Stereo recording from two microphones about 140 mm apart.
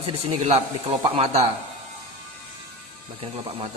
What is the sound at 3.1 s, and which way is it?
Speech, 40° right (ahead or behind).